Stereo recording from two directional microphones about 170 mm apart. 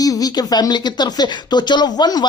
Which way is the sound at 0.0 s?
20° left (ahead or behind).